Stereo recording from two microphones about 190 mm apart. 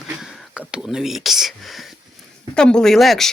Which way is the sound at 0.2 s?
Centre (ahead or behind).